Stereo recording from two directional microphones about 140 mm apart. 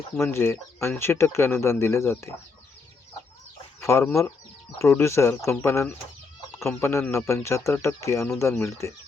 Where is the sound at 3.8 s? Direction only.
20° left (ahead or behind).